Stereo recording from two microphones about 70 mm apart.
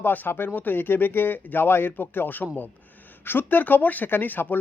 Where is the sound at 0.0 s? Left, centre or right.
Left.